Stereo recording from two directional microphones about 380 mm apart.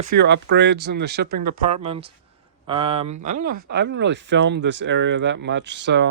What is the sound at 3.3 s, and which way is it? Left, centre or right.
Speech, right.